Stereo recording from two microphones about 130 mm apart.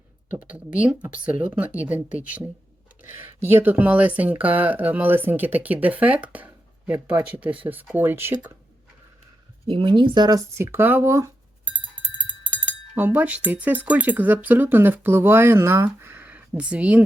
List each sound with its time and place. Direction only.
0.3 s speech: 10° right (ahead or behind)
9.6 s speech: 40° right (ahead or behind)
10.6 s speech: 15° right (ahead or behind)